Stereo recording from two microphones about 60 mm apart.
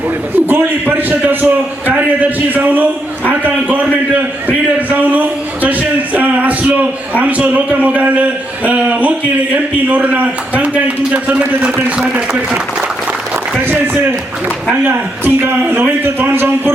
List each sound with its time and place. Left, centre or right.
0.3 s a man's voice: right
4.4 s a man's voice: right
14.8 s a man's voice: right